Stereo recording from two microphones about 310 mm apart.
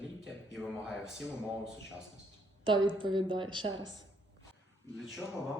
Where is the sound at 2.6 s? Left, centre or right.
Centre.